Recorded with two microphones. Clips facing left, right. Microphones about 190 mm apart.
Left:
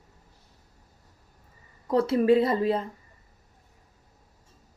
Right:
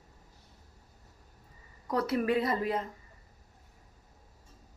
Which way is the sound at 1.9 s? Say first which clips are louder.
Left 8 dB; 25° left (ahead or behind).